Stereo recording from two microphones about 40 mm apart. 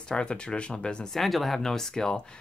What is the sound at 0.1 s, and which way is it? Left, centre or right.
Speech, left.